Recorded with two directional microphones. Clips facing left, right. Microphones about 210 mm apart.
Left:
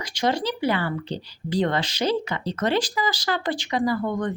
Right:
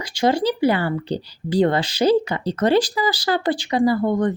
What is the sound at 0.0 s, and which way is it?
A woman's voice, 30° right (ahead or behind).